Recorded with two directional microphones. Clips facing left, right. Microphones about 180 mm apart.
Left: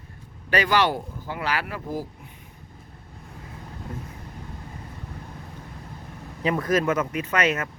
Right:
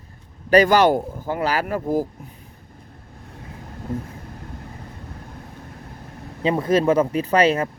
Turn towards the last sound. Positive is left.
turn(degrees=-30)  # may be behind; listen again after turning